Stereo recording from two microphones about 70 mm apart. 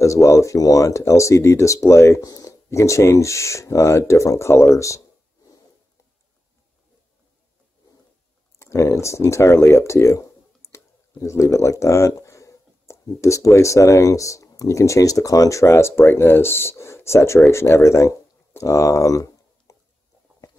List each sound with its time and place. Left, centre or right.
0.0 s speech: left
8.5 s a sound: left
13.2 s speech: left